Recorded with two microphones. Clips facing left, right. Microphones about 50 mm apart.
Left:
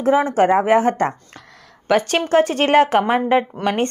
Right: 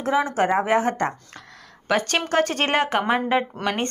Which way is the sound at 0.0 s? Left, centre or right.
Left.